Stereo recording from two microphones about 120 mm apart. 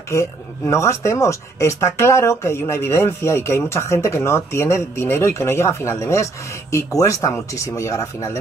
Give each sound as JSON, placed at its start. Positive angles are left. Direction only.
{"t": 0.1, "sound": "speech", "side_deg": 25}